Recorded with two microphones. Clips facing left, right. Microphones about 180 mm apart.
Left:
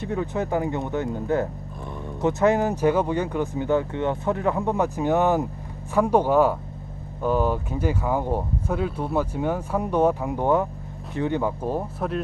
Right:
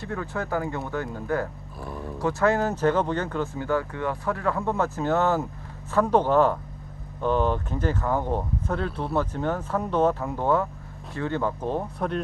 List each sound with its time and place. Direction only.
0.0 s speech: 20° left (ahead or behind)
1.9 s roaring cats: 5° right (ahead or behind)
2.2 s speech: 20° left (ahead or behind); by 12.2 s 5° left (ahead or behind)